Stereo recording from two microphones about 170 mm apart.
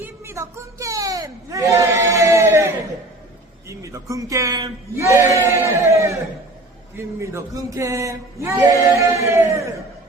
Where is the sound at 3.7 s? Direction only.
20° right (ahead or behind).